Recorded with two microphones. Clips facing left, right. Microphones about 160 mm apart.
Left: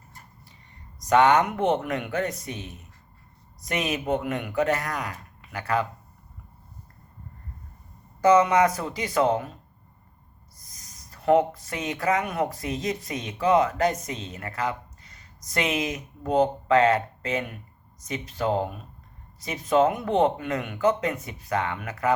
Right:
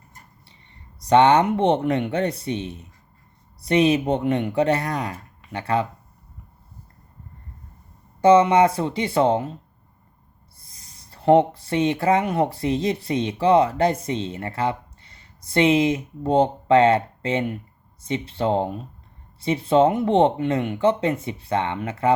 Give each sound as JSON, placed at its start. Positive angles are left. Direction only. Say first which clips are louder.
{"t": 1.0, "sound": "speech", "louder": "right 4 dB", "side_deg": -30}
{"t": 8.2, "sound": "speech", "louder": "right 4 dB", "side_deg": -25}
{"t": 10.6, "sound": "speech", "louder": "even", "side_deg": -30}